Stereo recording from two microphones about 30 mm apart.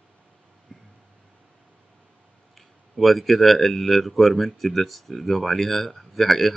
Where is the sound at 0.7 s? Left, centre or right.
Left.